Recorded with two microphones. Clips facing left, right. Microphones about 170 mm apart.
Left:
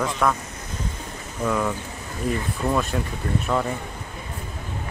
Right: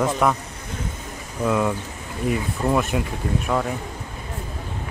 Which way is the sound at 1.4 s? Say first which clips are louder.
Right 3 dB; 10° right (ahead or behind).